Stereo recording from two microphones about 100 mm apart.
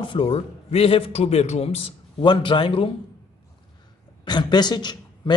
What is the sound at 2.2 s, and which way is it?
Speech, 55° left (ahead or behind).